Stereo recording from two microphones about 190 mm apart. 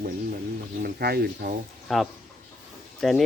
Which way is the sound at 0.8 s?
55° right (ahead or behind).